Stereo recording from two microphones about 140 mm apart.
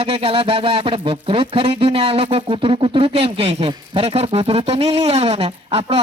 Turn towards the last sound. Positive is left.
turn(degrees=-40)  # may be behind; listen again after turning